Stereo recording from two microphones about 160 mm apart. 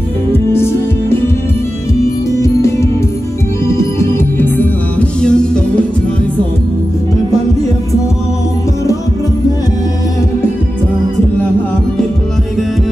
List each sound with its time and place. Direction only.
0.3 s music: 15° left (ahead or behind)
2.3 s music: 20° left (ahead or behind)
4.0 s music: 15° left (ahead or behind)